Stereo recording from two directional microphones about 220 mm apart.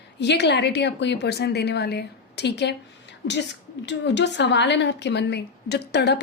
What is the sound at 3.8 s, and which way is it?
A woman's voice, 55° left (ahead or behind).